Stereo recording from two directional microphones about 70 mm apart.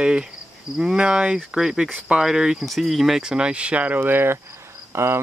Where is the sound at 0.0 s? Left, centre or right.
Centre.